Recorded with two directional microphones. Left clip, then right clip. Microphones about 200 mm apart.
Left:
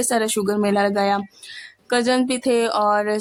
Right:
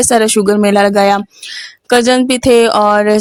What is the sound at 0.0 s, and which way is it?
Speech, 35° right (ahead or behind).